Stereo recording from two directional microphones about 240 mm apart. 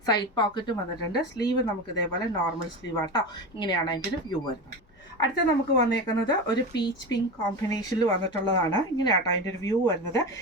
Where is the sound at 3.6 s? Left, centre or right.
Centre.